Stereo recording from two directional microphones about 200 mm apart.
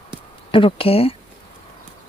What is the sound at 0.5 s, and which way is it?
Speech, 25° left (ahead or behind).